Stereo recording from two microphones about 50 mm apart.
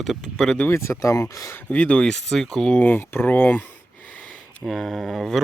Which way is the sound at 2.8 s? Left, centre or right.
Left.